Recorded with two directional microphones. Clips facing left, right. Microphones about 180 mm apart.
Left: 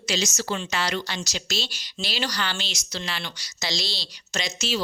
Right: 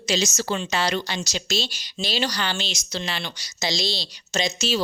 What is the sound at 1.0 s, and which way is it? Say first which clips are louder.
Speech: right 3 dB; 15° right (ahead or behind).